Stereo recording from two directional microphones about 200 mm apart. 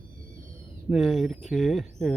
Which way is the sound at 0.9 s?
Centre (ahead or behind).